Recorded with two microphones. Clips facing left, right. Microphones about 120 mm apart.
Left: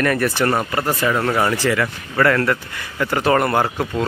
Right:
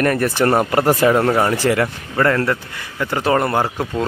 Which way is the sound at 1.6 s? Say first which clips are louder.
Right 2 dB; 40° right (ahead or behind).